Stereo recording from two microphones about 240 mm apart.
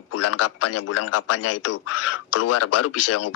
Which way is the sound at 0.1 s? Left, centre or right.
Left.